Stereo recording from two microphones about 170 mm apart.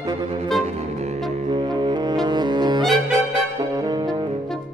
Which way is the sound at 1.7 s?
25° right (ahead or behind).